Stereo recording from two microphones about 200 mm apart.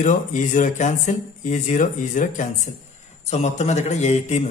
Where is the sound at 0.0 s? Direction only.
40° left (ahead or behind).